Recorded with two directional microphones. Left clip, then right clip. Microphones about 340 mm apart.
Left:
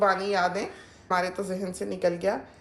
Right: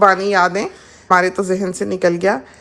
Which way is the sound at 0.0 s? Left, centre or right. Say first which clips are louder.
Right 11 dB; right.